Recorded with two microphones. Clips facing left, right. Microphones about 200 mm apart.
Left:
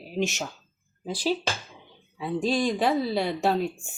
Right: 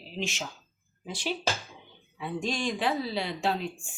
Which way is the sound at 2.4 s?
35° left (ahead or behind).